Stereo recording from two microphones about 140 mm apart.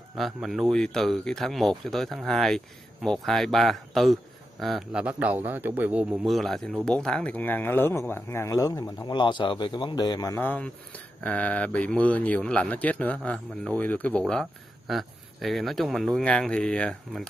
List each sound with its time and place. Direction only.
0.2 s speech: centre (ahead or behind)
6.2 s speech: centre (ahead or behind); by 9.1 s 25° left (ahead or behind)
9.1 s speech: 35° left (ahead or behind)
10.4 s speech: 15° left (ahead or behind)